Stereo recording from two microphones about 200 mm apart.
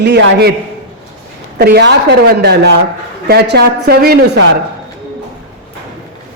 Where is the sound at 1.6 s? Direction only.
55° right (ahead or behind).